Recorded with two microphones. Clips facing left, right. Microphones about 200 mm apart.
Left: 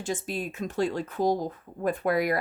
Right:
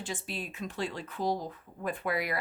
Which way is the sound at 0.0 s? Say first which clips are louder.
Left 7 dB; 45° left (ahead or behind).